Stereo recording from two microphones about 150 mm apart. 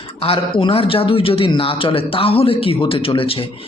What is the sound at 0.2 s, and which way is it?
A man's voice, 35° left (ahead or behind).